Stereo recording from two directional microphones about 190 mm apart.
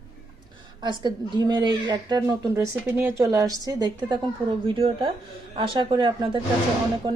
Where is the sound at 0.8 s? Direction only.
25° right (ahead or behind).